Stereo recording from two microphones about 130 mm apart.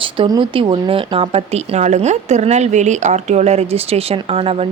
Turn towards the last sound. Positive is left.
turn(degrees=-50)  # may be behind; listen again after turning